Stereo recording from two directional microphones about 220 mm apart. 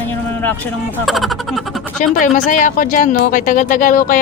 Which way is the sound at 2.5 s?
35° left (ahead or behind).